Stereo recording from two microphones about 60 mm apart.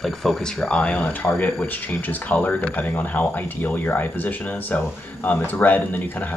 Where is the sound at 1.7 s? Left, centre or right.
Left.